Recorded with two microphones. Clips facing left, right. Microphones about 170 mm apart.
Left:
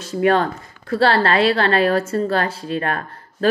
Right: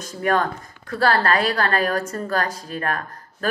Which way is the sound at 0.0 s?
30° left (ahead or behind).